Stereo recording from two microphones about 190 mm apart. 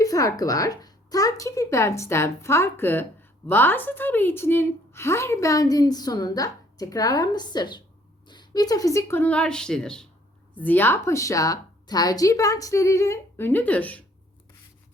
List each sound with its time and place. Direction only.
0.0 s speech: 20° left (ahead or behind)